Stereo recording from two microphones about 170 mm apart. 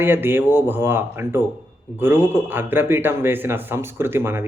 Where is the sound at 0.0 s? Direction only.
10° right (ahead or behind).